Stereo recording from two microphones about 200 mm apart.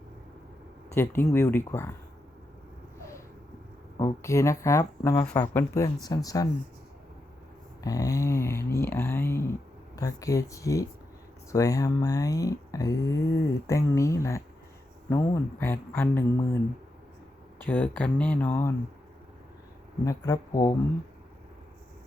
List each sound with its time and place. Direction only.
0.9 s speech: 10° left (ahead or behind)
3.9 s speech: 15° left (ahead or behind)
7.9 s speech: 15° left (ahead or behind)
17.7 s speech: 10° left (ahead or behind)
20.1 s speech: 20° left (ahead or behind)